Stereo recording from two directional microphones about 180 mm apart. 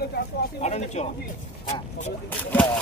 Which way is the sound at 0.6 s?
40° left (ahead or behind).